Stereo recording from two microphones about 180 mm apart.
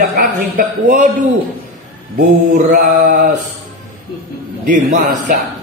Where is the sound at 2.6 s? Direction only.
45° right (ahead or behind).